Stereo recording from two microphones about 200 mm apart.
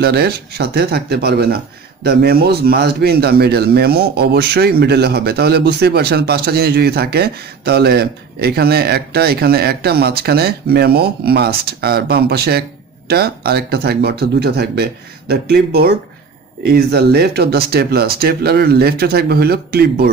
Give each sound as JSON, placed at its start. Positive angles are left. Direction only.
{"t": 0.0, "sound": "speech", "side_deg": -55}